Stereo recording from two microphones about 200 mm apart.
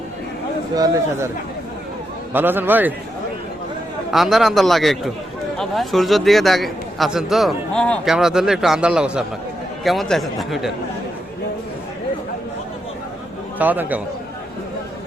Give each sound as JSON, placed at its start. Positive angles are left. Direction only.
{"t": 0.8, "sound": "a man's voice", "side_deg": -15}
{"t": 2.3, "sound": "a man's voice", "side_deg": -10}
{"t": 4.1, "sound": "a man's voice", "side_deg": 0}
{"t": 13.6, "sound": "a man's voice", "side_deg": -10}